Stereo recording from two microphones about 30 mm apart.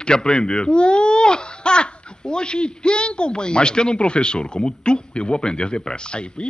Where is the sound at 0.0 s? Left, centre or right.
Left.